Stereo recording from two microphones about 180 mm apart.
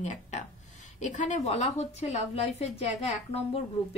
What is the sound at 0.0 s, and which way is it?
Speech, 40° left (ahead or behind).